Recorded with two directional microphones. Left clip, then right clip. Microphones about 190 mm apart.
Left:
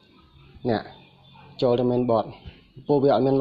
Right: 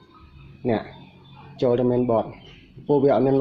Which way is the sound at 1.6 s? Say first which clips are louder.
Right 1 dB; 30° left (ahead or behind).